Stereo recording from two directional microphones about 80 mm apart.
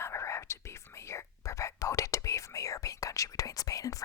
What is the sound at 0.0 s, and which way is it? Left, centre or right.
Whispering, left.